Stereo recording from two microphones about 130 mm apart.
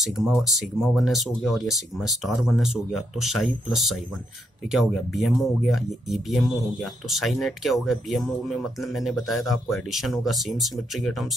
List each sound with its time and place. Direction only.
0.0 s speech: centre (ahead or behind)